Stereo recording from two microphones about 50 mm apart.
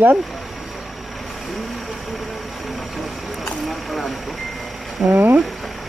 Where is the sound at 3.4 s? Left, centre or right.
Centre.